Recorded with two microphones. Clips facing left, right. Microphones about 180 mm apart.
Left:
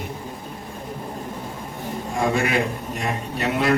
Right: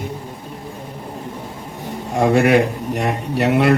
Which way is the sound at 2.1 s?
70° right (ahead or behind).